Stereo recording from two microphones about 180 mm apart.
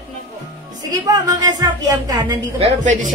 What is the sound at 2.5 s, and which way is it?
Speech, 40° right (ahead or behind).